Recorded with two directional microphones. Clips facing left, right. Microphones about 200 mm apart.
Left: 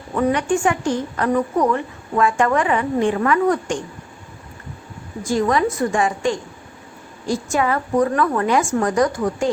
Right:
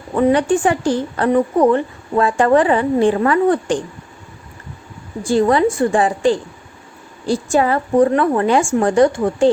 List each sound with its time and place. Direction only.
0.2 s a woman's voice: 30° right (ahead or behind)
5.2 s a woman's voice: 30° right (ahead or behind)